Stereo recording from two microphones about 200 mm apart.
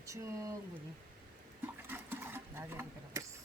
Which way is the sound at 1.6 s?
10° right (ahead or behind).